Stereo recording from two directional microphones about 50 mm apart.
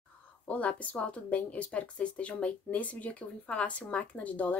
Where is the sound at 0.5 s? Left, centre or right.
Left.